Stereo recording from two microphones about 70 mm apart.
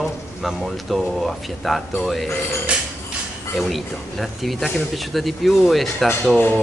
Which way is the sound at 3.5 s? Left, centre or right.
Centre.